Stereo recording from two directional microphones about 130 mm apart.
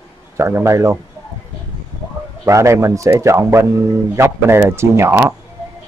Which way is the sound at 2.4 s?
20° right (ahead or behind).